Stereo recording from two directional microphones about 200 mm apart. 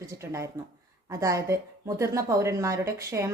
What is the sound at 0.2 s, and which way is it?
A woman's voice, 15° right (ahead or behind).